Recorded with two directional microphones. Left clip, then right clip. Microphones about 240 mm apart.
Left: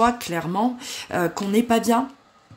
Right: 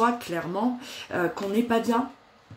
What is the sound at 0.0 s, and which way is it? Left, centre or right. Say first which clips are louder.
Speech: left 4 dB; left.